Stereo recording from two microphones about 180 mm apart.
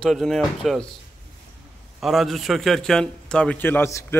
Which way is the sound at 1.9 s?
Centre (ahead or behind).